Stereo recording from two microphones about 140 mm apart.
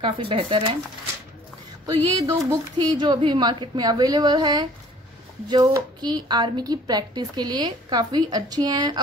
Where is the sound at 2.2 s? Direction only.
25° right (ahead or behind).